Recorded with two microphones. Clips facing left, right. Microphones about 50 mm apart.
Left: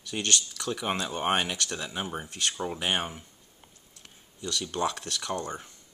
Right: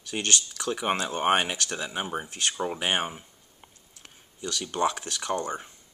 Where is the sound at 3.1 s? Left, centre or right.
Centre.